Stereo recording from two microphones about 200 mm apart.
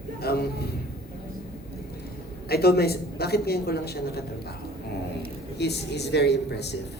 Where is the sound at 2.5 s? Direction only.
50° left (ahead or behind).